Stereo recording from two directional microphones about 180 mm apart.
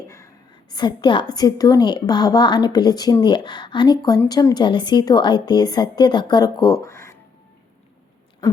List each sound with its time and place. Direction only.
0.7 s a woman's voice: 25° left (ahead or behind)